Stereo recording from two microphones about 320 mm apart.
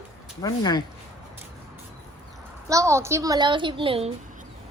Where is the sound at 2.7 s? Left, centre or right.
Centre.